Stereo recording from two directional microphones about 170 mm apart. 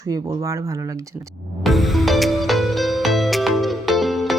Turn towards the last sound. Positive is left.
turn(degrees=0)  # may be behind; listen again after turning